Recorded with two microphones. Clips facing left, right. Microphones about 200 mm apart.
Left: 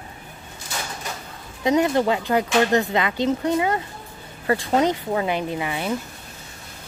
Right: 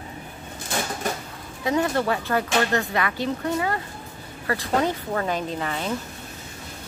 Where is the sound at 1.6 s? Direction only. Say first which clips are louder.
Left 4 dB; 20° left (ahead or behind).